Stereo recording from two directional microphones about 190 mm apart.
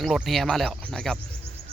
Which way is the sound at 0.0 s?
Centre (ahead or behind).